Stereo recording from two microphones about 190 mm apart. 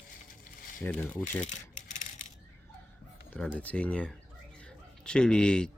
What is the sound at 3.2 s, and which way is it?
Speech, 5° left (ahead or behind).